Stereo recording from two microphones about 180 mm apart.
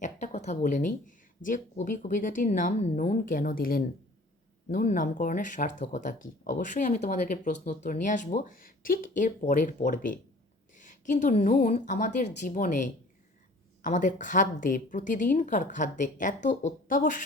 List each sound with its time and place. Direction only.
0.0 s a woman's voice: 40° left (ahead or behind)